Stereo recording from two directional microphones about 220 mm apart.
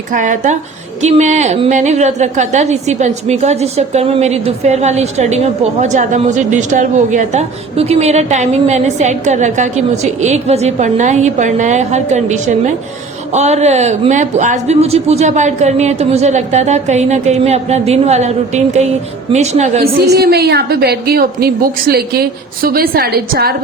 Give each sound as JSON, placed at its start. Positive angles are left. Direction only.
{"t": 0.1, "sound": "a woman's voice", "side_deg": -35}
{"t": 19.8, "sound": "a woman's voice", "side_deg": -45}